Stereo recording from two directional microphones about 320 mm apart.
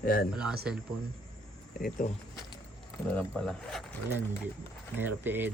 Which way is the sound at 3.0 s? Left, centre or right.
Centre.